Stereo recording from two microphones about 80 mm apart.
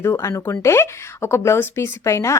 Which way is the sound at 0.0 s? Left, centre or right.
Left.